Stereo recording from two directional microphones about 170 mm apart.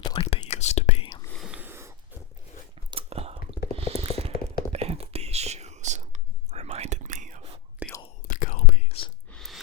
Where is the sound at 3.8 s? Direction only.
35° right (ahead or behind).